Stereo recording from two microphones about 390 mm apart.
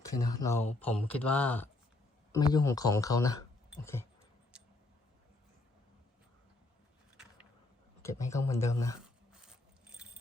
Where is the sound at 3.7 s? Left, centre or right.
Centre.